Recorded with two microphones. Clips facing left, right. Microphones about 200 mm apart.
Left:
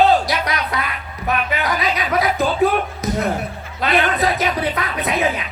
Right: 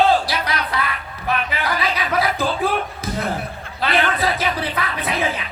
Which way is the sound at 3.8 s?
30° right (ahead or behind).